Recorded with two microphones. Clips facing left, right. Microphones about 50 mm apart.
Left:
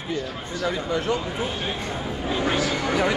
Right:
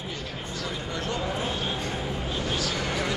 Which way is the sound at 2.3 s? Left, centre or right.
Left.